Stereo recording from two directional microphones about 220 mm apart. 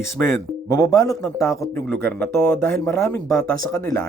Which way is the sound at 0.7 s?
15° left (ahead or behind).